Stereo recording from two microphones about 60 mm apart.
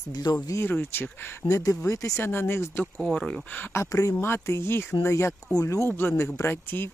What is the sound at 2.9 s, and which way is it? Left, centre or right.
Speech, centre.